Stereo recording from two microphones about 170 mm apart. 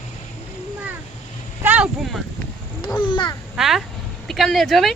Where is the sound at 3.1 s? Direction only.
30° left (ahead or behind).